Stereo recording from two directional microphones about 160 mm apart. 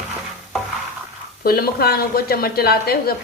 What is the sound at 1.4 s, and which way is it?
Speech, 70° left (ahead or behind).